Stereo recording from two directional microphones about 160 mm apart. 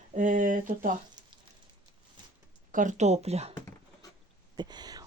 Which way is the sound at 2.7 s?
55° right (ahead or behind).